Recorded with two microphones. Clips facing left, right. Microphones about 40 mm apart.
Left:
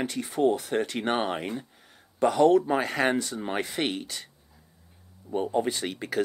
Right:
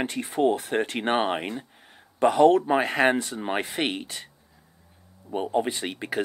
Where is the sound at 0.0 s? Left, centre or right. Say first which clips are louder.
Right 1 dB; right.